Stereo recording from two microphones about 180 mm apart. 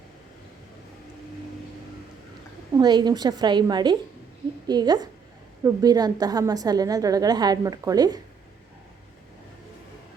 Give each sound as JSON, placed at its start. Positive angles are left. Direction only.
{"t": 2.7, "sound": "a woman's voice", "side_deg": -25}